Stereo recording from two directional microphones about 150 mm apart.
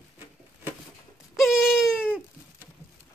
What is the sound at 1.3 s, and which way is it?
Wail, centre (ahead or behind).